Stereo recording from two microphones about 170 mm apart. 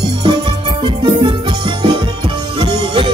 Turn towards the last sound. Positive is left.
turn(degrees=-30)  # may be behind; listen again after turning